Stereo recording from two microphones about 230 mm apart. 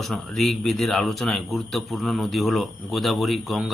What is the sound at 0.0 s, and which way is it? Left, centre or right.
Speech, centre.